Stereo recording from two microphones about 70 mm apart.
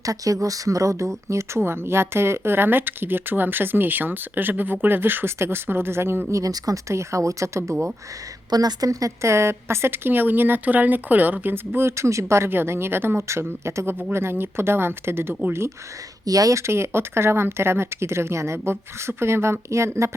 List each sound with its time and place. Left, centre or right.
0.0 s speech: right
6.3 s speech: right
8.4 s speech: right
16.2 s speech: right